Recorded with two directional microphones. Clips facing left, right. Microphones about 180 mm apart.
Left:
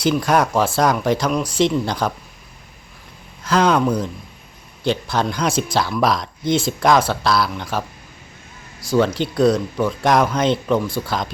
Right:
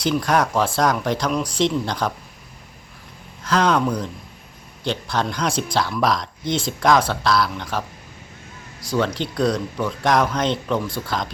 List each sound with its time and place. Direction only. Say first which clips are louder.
0.0 s speech: left 2 dB; 5° left (ahead or behind)
3.4 s speech: left 2 dB; 5° left (ahead or behind)